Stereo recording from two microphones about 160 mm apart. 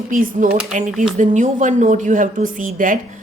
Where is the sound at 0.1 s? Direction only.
60° right (ahead or behind).